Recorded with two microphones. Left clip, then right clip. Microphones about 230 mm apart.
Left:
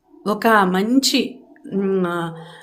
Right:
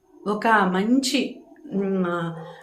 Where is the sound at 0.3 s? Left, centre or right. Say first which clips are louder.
Left 4 dB; left.